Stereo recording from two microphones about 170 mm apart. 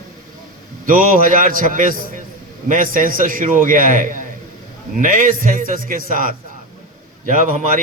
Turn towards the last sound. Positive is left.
turn(degrees=-50)  # may be behind; listen again after turning